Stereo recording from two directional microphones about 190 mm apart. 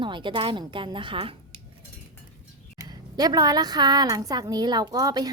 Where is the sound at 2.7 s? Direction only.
20° right (ahead or behind).